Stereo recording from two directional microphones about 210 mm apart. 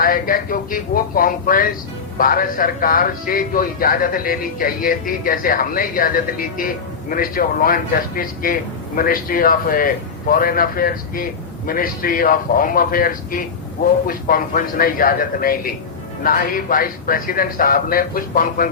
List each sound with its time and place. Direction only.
0.0 s a man's voice: 40° left (ahead or behind)